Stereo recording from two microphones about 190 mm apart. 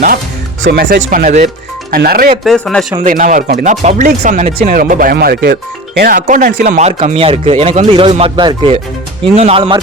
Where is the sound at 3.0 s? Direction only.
45° right (ahead or behind).